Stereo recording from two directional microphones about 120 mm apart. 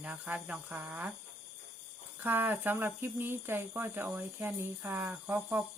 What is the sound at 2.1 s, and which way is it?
Speech, 15° right (ahead or behind).